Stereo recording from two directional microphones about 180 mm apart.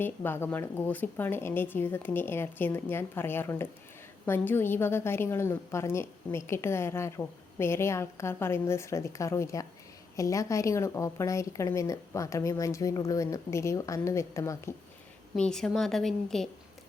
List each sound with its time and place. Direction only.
0.0 s a woman's voice: 10° left (ahead or behind)
15.4 s a woman's voice: 5° left (ahead or behind)